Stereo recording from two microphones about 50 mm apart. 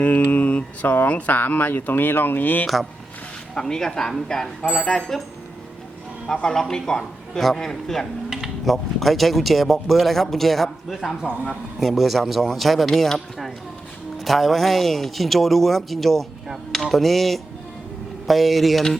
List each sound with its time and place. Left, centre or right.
0.0 s speech: left
3.5 s a man's voice: centre
6.3 s a man's voice: centre